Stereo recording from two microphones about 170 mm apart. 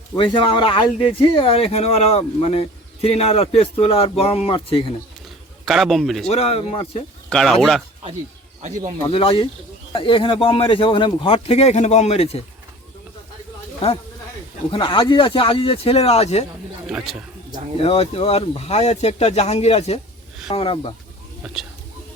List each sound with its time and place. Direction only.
0.2 s speech: 30° left (ahead or behind)
5.6 s speech: centre (ahead or behind)
6.2 s speech: 35° left (ahead or behind)
7.3 s speech: 5° left (ahead or behind)
9.0 s speech: 35° left (ahead or behind)
14.7 s speech: 30° left (ahead or behind)
16.8 s speech: 5° right (ahead or behind)
17.7 s speech: 35° left (ahead or behind)
21.4 s speech: 5° right (ahead or behind)